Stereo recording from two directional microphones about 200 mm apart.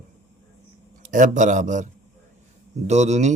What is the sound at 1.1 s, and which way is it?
Speech, 40° right (ahead or behind).